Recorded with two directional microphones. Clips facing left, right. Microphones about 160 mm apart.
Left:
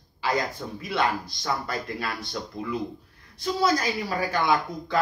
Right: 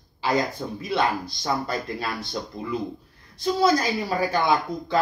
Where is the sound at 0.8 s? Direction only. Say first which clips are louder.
Right 2 dB; 30° right (ahead or behind).